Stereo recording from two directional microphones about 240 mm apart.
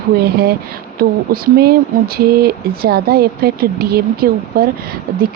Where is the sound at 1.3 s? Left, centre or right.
Right.